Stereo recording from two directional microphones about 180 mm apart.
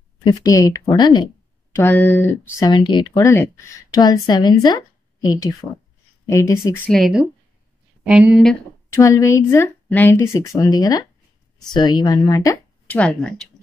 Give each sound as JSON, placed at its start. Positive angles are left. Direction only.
{"t": 0.2, "sound": "speech", "side_deg": 20}
{"t": 1.7, "sound": "speech", "side_deg": 10}
{"t": 6.9, "sound": "speech", "side_deg": 0}
{"t": 8.9, "sound": "speech", "side_deg": 15}
{"t": 12.8, "sound": "speech", "side_deg": 5}